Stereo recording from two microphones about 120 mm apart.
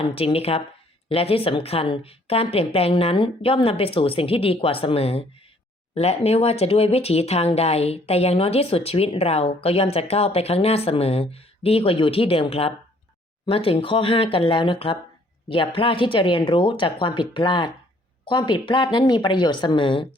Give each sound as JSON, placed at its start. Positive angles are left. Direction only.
{"t": 0.0, "sound": "a woman's voice", "side_deg": 55}